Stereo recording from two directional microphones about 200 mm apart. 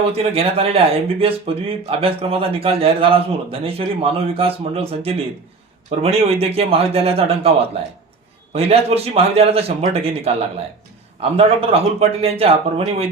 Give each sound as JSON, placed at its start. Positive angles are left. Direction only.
{"t": 0.1, "sound": "speech", "side_deg": -30}